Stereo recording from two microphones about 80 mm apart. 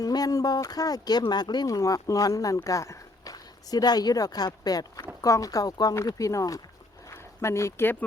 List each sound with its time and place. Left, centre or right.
0.0 s speech: left
1.6 s speech: left